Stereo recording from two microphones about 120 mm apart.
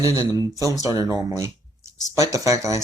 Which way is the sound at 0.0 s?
25° right (ahead or behind).